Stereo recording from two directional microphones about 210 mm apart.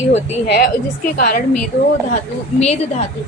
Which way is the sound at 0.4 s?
50° left (ahead or behind).